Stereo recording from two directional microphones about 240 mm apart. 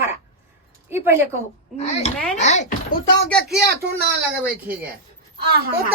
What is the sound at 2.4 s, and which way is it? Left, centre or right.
Speech, left.